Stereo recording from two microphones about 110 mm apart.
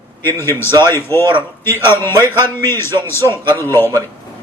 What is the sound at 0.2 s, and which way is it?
A man's voice, 20° left (ahead or behind).